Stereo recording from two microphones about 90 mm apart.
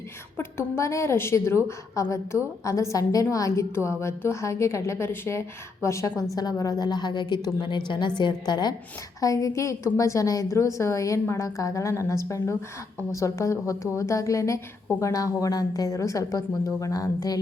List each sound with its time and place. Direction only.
0.3 s a woman's voice: 30° left (ahead or behind); by 8.7 s 50° left (ahead or behind)
9.2 s a woman's voice: 40° left (ahead or behind)